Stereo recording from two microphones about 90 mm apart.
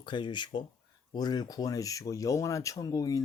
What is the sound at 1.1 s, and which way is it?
Speech, 50° left (ahead or behind).